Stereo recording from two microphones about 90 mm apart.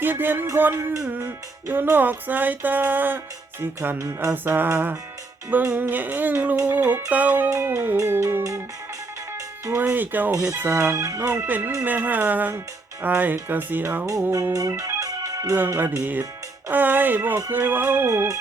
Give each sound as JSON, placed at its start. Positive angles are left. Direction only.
{"t": 0.0, "sound": "music", "side_deg": -20}
{"t": 4.5, "sound": "music", "side_deg": -20}
{"t": 9.7, "sound": "music", "side_deg": -20}
{"t": 11.2, "sound": "music", "side_deg": -25}
{"t": 14.3, "sound": "organ", "side_deg": -35}
{"t": 15.5, "sound": "music", "side_deg": -20}